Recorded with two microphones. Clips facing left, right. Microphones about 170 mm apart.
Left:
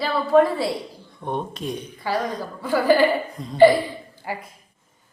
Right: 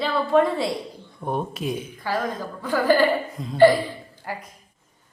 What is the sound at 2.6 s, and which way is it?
Speech, 10° left (ahead or behind).